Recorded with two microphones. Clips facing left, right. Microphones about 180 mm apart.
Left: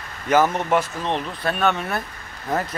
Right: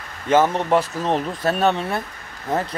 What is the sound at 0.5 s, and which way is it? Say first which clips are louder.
Speech: right 2 dB; 35° right (ahead or behind).